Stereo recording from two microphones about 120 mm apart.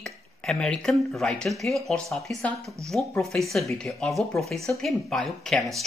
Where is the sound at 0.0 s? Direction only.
5° left (ahead or behind).